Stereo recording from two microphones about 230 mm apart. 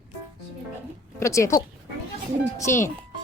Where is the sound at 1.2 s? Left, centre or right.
Centre.